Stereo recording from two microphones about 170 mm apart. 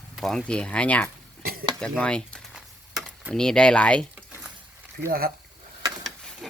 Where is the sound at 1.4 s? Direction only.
60° right (ahead or behind).